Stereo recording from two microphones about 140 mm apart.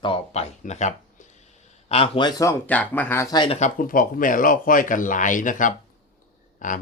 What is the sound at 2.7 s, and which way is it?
Speech, 10° left (ahead or behind).